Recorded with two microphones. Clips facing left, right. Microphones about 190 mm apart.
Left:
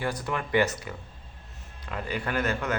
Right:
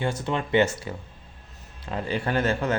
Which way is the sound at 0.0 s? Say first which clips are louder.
Right 3 dB; 25° right (ahead or behind).